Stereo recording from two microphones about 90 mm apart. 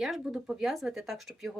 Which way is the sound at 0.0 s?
5° right (ahead or behind).